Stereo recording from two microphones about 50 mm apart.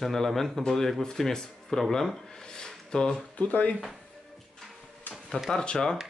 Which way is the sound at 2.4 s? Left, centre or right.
Centre.